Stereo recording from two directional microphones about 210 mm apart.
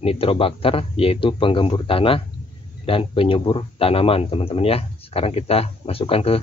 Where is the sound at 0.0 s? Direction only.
25° left (ahead or behind).